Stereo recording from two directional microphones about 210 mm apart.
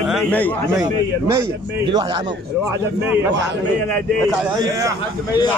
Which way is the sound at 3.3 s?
55° right (ahead or behind).